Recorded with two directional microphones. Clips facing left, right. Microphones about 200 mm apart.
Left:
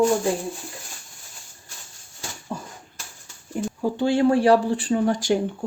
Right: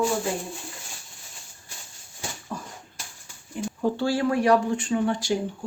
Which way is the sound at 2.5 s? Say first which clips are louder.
Left 3 dB; 25° left (ahead or behind).